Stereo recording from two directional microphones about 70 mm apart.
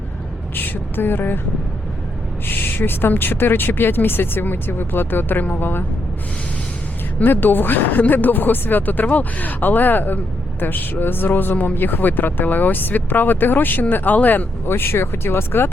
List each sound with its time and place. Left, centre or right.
0.5 s speech: left
2.5 s a woman's voice: left
7.2 s speech: left